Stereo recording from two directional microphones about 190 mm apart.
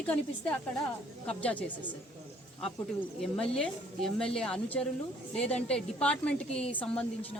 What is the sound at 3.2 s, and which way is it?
A woman's voice, 5° left (ahead or behind).